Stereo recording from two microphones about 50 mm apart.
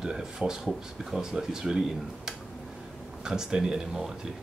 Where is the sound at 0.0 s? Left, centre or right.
Centre.